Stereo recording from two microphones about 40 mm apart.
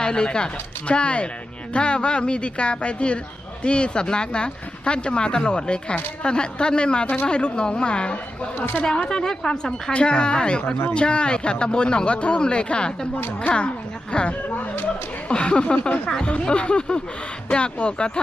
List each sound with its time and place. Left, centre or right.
0.0 s a woman's voice: left
13.1 s speech: left
14.1 s speech: left
14.4 s speech: left
15.3 s speech: left